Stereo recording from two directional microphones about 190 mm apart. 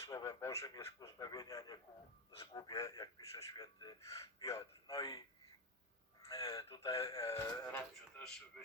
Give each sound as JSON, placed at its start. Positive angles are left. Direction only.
{"t": 0.1, "sound": "speech", "side_deg": 15}
{"t": 6.2, "sound": "speech", "side_deg": 20}